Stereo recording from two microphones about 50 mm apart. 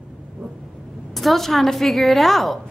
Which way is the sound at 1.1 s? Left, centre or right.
Centre.